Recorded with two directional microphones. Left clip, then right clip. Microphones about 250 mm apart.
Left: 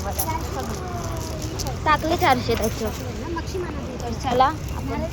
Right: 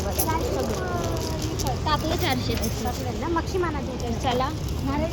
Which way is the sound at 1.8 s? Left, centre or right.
Left.